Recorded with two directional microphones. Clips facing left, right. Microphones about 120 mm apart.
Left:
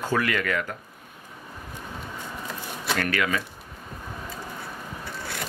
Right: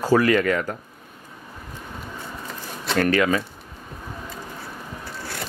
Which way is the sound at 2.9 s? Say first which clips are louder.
Right 6 dB; 30° right (ahead or behind).